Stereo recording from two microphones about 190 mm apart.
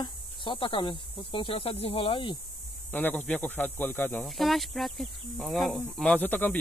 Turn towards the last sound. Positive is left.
turn(degrees=10)  # may be behind; listen again after turning